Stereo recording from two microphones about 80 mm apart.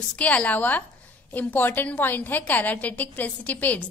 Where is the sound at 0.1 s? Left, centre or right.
Centre.